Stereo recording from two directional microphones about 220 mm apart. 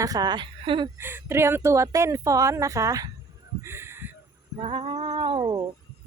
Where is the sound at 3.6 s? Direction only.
10° right (ahead or behind).